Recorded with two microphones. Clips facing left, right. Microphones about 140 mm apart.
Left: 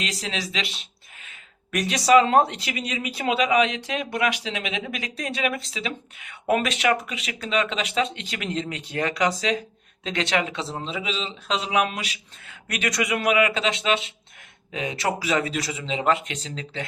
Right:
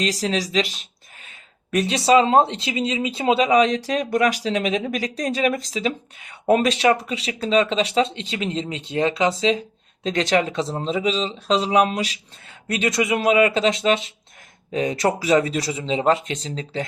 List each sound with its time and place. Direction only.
0.0 s speech: 35° right (ahead or behind)
1.7 s speech: 25° right (ahead or behind)
10.0 s speech: 35° right (ahead or behind)